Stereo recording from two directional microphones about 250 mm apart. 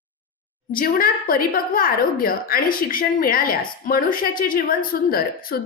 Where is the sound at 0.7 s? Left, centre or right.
Left.